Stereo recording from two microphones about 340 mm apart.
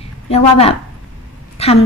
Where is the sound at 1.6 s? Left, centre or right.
Centre.